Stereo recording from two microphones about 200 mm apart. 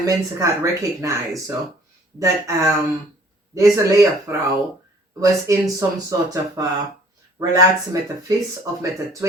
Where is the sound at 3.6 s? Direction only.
15° right (ahead or behind).